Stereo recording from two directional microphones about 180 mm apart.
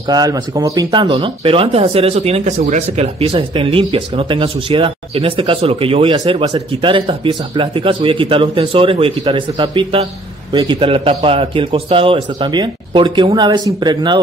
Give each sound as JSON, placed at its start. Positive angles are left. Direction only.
{"t": 0.0, "sound": "speech", "side_deg": -20}